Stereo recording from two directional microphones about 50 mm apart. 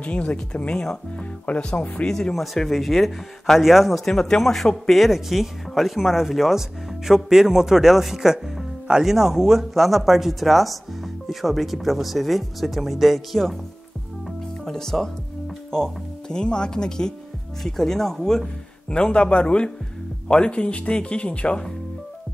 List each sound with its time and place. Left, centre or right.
0.0 s speech: left
2.3 s speech: centre
4.0 s speech: centre
14.6 s speech: centre
18.9 s speech: centre